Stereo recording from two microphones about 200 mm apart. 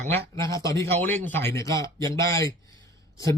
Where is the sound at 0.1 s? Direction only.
15° left (ahead or behind).